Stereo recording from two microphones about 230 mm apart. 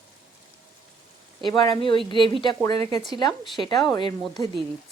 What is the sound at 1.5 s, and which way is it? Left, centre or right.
Speech, centre.